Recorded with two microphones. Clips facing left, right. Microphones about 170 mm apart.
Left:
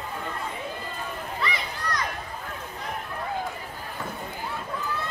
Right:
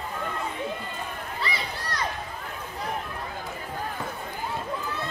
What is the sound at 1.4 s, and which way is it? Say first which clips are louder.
Children playing: left 2 dB; 30° right (ahead or behind).